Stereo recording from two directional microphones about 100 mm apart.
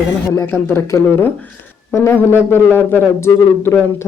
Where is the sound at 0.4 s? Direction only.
25° left (ahead or behind).